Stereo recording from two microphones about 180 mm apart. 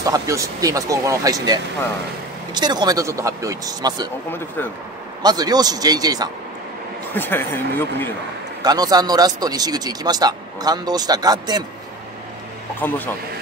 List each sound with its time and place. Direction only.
0.0 s speech: 20° right (ahead or behind)
5.2 s speech: 20° right (ahead or behind)
7.2 s speech: 10° left (ahead or behind)
8.6 s speech: 20° right (ahead or behind)
12.8 s speech: 10° left (ahead or behind)